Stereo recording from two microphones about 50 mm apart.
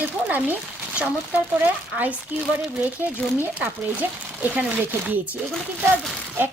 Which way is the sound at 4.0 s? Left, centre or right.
Right.